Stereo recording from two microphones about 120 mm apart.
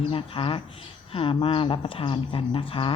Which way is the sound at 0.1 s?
50° left (ahead or behind).